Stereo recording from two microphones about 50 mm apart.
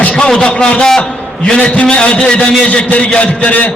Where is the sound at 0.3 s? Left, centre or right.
Centre.